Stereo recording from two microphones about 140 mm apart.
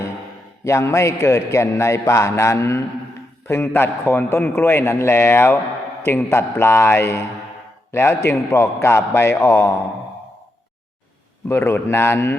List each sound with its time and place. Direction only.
0.6 s a man's voice: 20° left (ahead or behind)
11.4 s a man's voice: 15° left (ahead or behind)